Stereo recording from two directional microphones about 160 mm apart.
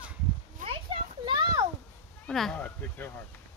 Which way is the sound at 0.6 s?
35° right (ahead or behind).